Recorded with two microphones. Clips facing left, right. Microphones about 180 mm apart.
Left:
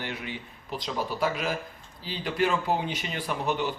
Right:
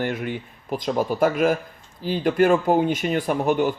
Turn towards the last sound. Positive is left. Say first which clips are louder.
# right 8 dB
turn(degrees=-50)  # may be behind; listen again after turning